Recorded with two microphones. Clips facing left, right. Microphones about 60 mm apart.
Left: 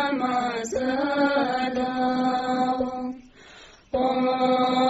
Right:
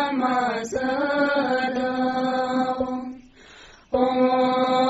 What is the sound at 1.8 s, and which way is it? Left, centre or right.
Chant, right.